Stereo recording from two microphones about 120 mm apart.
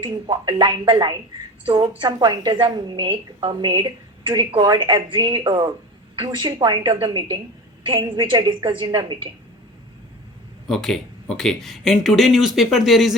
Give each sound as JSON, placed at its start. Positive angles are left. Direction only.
{"t": 0.0, "sound": "a woman's voice", "side_deg": -40}
{"t": 10.7, "sound": "speech", "side_deg": 0}